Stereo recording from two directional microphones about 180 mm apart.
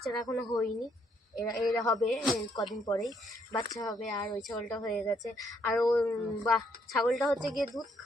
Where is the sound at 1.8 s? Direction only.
20° left (ahead or behind).